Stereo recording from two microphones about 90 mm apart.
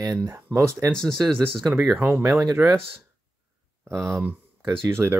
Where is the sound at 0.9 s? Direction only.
10° left (ahead or behind).